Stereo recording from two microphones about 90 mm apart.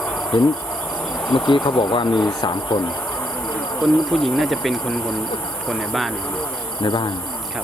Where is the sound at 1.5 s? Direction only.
65° left (ahead or behind).